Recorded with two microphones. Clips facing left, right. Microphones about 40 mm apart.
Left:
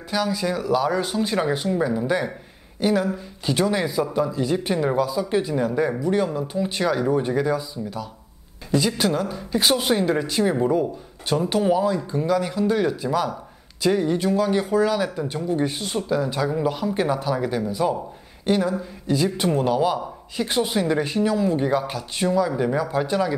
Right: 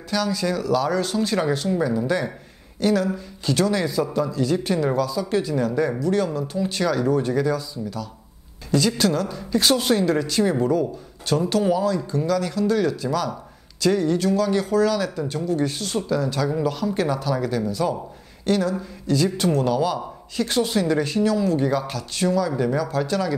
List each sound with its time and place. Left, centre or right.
0.1 s speech: centre